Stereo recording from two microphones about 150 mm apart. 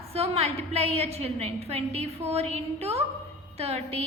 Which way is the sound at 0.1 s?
40° right (ahead or behind).